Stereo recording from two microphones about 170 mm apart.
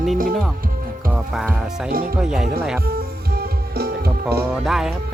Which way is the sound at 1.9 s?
60° right (ahead or behind).